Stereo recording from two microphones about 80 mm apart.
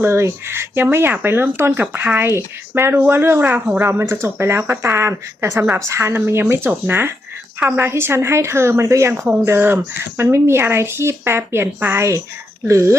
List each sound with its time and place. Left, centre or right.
0.0 s speech: right